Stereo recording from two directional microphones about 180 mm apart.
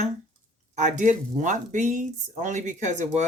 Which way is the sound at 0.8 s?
40° right (ahead or behind).